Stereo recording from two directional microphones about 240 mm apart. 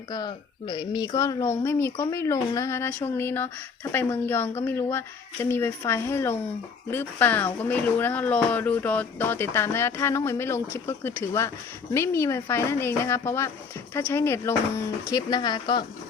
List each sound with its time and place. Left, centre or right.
0.1 s speech: centre